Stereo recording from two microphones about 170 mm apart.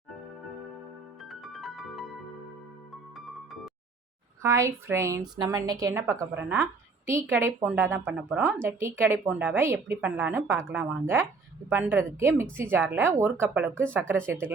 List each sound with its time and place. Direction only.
1.2 s music: centre (ahead or behind)
3.2 s music: centre (ahead or behind)
4.4 s a woman's voice: 15° right (ahead or behind)